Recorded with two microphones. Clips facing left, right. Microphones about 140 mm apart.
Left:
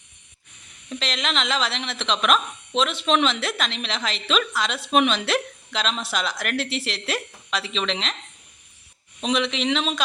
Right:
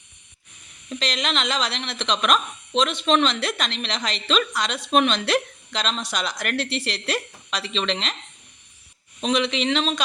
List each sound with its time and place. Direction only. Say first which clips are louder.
0.9 s speech: right 1 dB; centre (ahead or behind)
9.2 s speech: right 1 dB; centre (ahead or behind)